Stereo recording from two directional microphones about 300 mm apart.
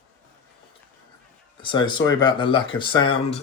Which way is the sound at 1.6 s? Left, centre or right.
Centre.